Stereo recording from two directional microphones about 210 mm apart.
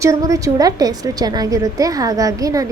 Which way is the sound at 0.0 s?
15° right (ahead or behind).